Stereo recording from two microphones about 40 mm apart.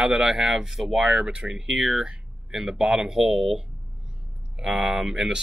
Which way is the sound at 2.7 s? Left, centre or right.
Centre.